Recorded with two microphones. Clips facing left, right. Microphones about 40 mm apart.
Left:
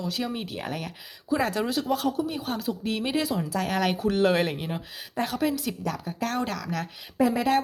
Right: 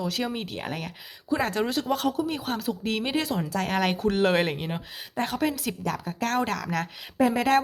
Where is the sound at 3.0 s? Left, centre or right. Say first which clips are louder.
Even; right.